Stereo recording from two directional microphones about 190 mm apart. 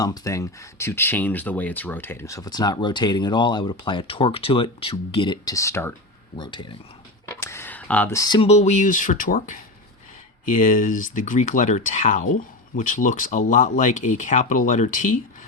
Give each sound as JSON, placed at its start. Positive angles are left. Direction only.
{"t": 0.0, "sound": "speech", "side_deg": 20}
{"t": 6.3, "sound": "speech", "side_deg": 25}
{"t": 7.4, "sound": "speech", "side_deg": 10}